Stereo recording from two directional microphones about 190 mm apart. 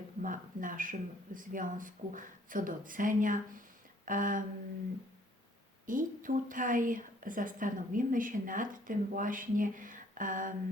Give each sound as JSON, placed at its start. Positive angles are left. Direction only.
{"t": 0.2, "sound": "a woman's voice", "side_deg": -45}
{"t": 4.0, "sound": "a sound", "side_deg": -45}
{"t": 5.8, "sound": "a woman's voice", "side_deg": -45}